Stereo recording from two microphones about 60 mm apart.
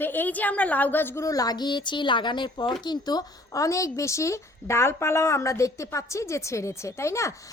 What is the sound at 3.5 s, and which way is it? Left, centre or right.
A woman's voice, left.